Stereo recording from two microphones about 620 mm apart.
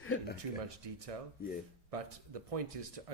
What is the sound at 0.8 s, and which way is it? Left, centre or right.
Speech, right.